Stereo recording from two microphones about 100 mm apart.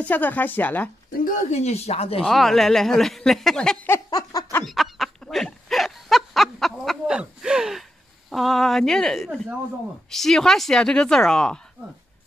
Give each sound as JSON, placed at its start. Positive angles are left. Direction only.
{"t": 0.0, "sound": "a woman's voice", "side_deg": 15}
{"t": 1.6, "sound": "speech", "side_deg": 90}
{"t": 2.2, "sound": "a woman's voice", "side_deg": 0}
{"t": 4.1, "sound": "a sound", "side_deg": 40}
{"t": 4.6, "sound": "a sound", "side_deg": 0}
{"t": 7.1, "sound": "gasp", "side_deg": -10}
{"t": 8.3, "sound": "a woman's voice", "side_deg": 0}